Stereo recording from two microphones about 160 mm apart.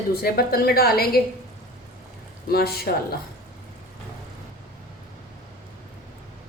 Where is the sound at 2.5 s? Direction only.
75° left (ahead or behind).